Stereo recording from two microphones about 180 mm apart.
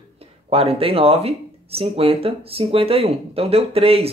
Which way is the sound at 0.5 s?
35° right (ahead or behind).